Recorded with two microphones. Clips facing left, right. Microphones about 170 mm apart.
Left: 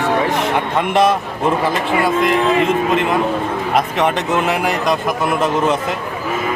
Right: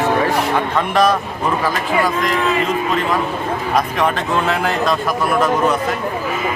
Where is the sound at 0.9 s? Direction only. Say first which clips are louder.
Left 1 dB; 25° left (ahead or behind).